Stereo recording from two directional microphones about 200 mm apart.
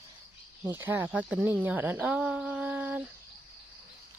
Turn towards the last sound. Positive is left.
turn(degrees=-10)  # may be behind; listen again after turning